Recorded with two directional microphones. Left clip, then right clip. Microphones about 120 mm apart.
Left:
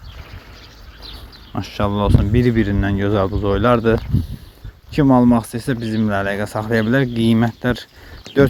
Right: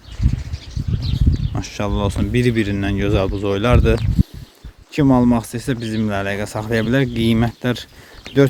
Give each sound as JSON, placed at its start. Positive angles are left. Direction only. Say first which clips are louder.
{"t": 1.5, "sound": "speech", "louder": "left 4 dB", "side_deg": -15}